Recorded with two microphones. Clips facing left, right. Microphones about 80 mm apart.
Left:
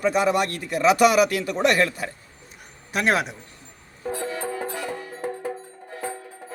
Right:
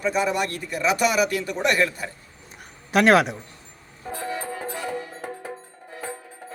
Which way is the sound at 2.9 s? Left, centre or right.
Right.